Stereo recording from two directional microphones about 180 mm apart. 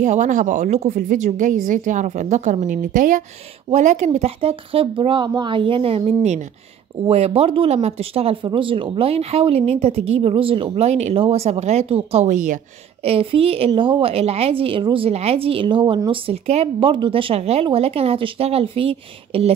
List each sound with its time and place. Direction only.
0.0 s a woman's voice: 40° right (ahead or behind)